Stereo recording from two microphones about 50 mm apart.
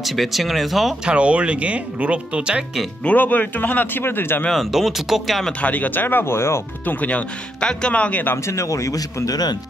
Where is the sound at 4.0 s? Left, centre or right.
Left.